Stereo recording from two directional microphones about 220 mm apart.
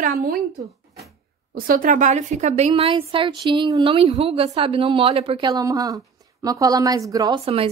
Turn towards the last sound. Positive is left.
turn(degrees=-15)  # may be behind; listen again after turning